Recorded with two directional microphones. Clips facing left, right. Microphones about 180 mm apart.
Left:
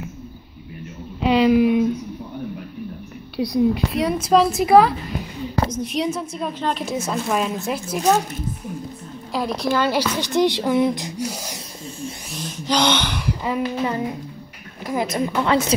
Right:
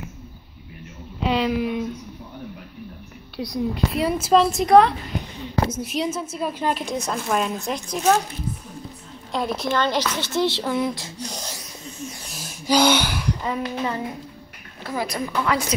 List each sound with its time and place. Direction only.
1.3 s speech: 5° left (ahead or behind)
3.4 s a woman's voice: 15° left (ahead or behind)
3.9 s a woman's voice: centre (ahead or behind)
9.3 s a woman's voice: centre (ahead or behind)
12.3 s a sound: 5° right (ahead or behind)
13.3 s a woman's voice: 10° left (ahead or behind)